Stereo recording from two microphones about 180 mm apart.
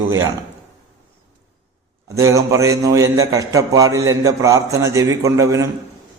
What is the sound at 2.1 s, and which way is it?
A man's voice, 15° right (ahead or behind).